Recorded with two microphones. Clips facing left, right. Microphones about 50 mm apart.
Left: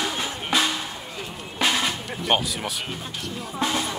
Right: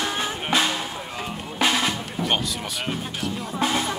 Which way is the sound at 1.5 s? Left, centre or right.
Centre.